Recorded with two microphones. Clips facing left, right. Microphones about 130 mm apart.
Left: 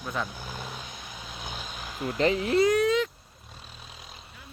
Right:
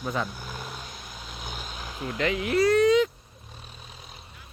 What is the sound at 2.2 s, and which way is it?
Speech, 35° left (ahead or behind).